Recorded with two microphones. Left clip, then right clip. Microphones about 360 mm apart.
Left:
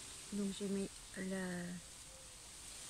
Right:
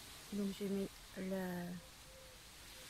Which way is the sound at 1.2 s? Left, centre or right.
Centre.